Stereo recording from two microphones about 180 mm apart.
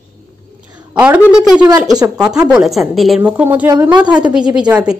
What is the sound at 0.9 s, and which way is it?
A woman's voice, 5° right (ahead or behind).